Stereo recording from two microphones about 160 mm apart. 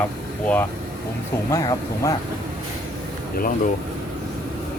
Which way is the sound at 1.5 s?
20° left (ahead or behind).